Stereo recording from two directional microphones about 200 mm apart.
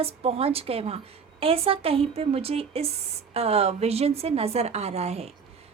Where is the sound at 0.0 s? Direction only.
30° right (ahead or behind).